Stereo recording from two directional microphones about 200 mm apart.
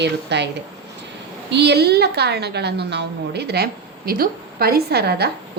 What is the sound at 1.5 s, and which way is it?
A woman's voice, 55° right (ahead or behind).